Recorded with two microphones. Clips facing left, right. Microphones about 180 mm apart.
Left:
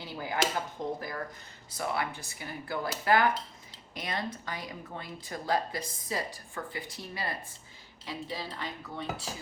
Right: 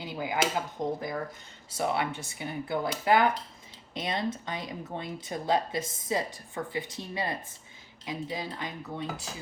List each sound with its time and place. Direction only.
0.0 s chop: 15° right (ahead or behind)
0.8 s a woman's voice: 15° right (ahead or behind)